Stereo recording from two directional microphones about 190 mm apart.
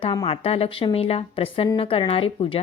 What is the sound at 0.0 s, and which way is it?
A woman's voice, 30° left (ahead or behind).